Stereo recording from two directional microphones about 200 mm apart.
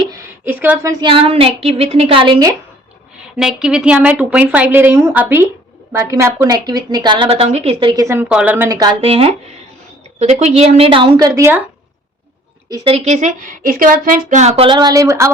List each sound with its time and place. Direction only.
0.4 s a woman's voice: 10° right (ahead or behind)
3.3 s a woman's voice: 5° right (ahead or behind); by 11.3 s 25° right (ahead or behind)
11.3 s a woman's voice: 10° right (ahead or behind)
12.7 s speech: 30° right (ahead or behind)